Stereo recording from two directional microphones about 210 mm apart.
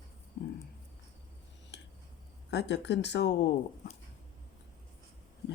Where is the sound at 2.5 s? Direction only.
55° left (ahead or behind).